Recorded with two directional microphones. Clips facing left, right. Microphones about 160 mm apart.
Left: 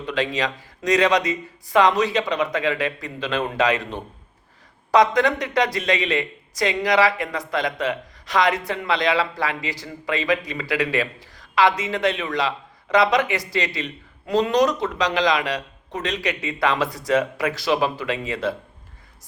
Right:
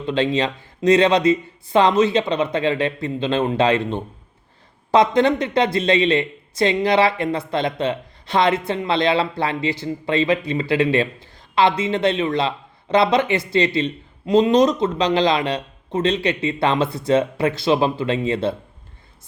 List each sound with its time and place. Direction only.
0.0 s speech: 25° right (ahead or behind)